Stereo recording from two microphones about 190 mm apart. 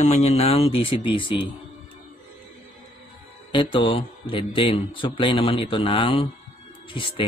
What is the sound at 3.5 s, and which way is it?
A man's voice, 25° left (ahead or behind).